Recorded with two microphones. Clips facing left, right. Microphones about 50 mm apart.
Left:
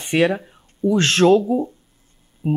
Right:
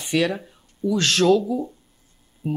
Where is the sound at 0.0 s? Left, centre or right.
Left.